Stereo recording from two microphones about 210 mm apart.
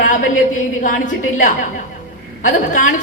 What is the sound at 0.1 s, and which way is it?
A woman's voice, 40° left (ahead or behind).